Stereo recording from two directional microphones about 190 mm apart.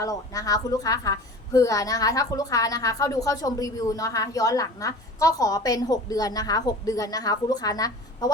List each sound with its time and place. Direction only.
0.0 s a woman's voice: 20° left (ahead or behind)